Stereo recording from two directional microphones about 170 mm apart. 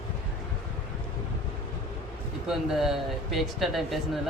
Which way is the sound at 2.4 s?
Centre (ahead or behind).